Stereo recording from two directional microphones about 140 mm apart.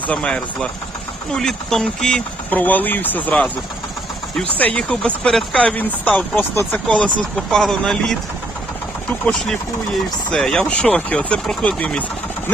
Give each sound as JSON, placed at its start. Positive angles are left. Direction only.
{"t": 0.1, "sound": "speech", "side_deg": 10}